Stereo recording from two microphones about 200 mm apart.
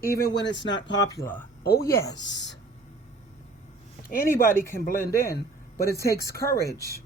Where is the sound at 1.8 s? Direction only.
15° left (ahead or behind).